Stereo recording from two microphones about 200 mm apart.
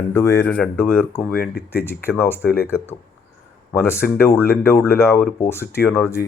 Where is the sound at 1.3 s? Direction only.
50° left (ahead or behind).